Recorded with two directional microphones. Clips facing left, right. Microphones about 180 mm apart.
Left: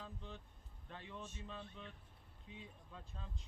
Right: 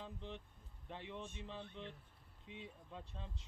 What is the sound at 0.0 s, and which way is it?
Vehicle, 25° right (ahead or behind).